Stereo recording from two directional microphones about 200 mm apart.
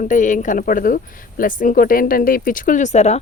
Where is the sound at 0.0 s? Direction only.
40° left (ahead or behind).